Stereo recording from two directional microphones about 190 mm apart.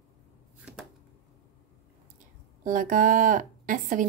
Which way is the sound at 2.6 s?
45° right (ahead or behind).